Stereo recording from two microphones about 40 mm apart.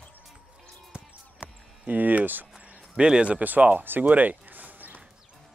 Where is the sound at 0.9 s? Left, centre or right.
Right.